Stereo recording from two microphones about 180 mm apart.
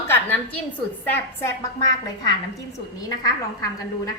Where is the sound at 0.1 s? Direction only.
10° left (ahead or behind).